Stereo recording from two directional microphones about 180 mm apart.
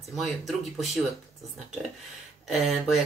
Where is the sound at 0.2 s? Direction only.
Centre (ahead or behind).